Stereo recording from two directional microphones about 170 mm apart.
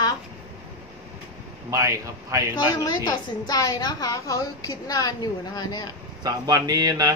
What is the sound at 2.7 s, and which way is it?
A woman's voice, 25° left (ahead or behind).